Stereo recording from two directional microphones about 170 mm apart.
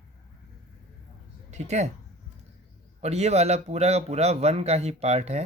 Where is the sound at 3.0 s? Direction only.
40° right (ahead or behind).